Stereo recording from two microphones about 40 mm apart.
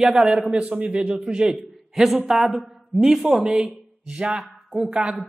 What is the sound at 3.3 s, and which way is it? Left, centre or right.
A man's voice, centre.